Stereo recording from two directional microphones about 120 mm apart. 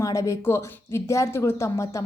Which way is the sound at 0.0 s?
25° left (ahead or behind).